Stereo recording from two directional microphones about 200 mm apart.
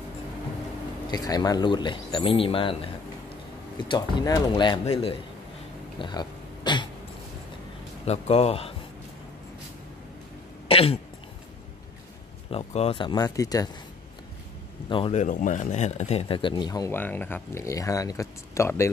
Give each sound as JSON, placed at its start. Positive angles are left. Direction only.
{"t": 1.1, "sound": "speech", "side_deg": 20}
{"t": 3.9, "sound": "speech", "side_deg": 20}
{"t": 5.9, "sound": "a sound", "side_deg": 20}
{"t": 8.0, "sound": "speech", "side_deg": 30}
{"t": 10.7, "sound": "speech", "side_deg": 30}
{"t": 12.4, "sound": "speech", "side_deg": 30}
{"t": 14.9, "sound": "speech", "side_deg": 25}
{"t": 15.2, "sound": "speech", "side_deg": 40}